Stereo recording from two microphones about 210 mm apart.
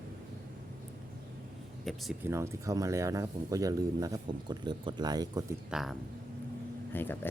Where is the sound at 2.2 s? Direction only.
15° right (ahead or behind).